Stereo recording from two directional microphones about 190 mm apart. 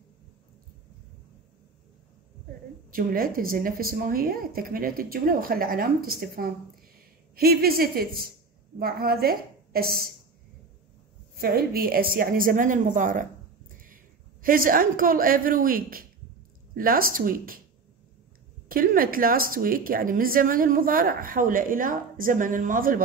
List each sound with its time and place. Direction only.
2.9 s a woman's voice: 50° right (ahead or behind)
11.4 s a woman's voice: 50° right (ahead or behind)
18.7 s speech: 50° right (ahead or behind)